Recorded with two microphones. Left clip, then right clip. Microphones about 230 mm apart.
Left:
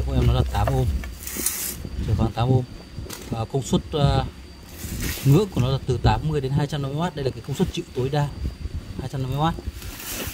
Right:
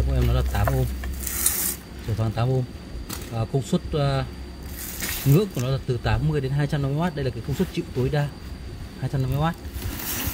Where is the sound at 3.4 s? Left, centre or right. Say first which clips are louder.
Left 1 dB; centre.